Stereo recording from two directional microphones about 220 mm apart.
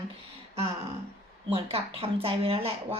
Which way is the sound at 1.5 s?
25° right (ahead or behind).